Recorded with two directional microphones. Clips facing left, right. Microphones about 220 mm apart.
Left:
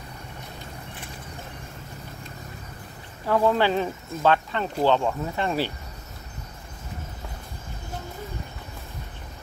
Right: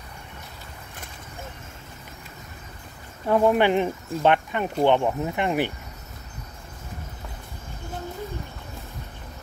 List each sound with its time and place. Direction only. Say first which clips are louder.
3.3 s speech: right 2 dB; 20° right (ahead or behind)